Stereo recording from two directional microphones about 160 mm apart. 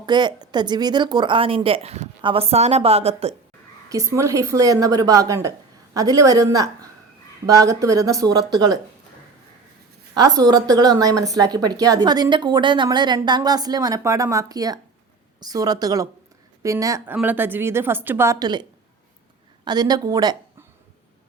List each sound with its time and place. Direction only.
0.0 s speech: 30° right (ahead or behind)
3.8 s a woman's voice: 20° right (ahead or behind)
10.2 s a woman's voice: 25° right (ahead or behind)
19.6 s a woman's voice: 25° right (ahead or behind)